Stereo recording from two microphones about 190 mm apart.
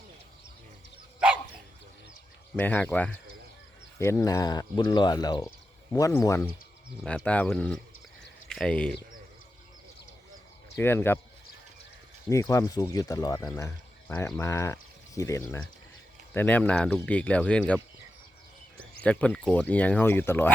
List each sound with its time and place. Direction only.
2.6 s speech: 10° left (ahead or behind)
10.8 s speech: 10° left (ahead or behind)
12.3 s speech: 15° left (ahead or behind)
19.0 s speech: 5° left (ahead or behind)